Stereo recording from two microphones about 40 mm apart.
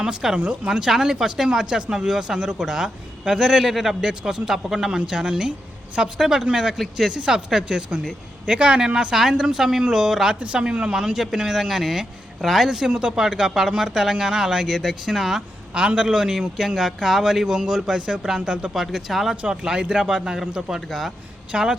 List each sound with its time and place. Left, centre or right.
0.0 s speech: centre
0.3 s a woman's voice: right
0.7 s speech: centre
3.7 s a man's voice: centre
4.0 s speech: centre
4.9 s speech: right
6.1 s speech: centre
10.4 s speech: right
11.0 s speech: centre
18.3 s speech: right
18.7 s speech: centre
19.6 s speech: centre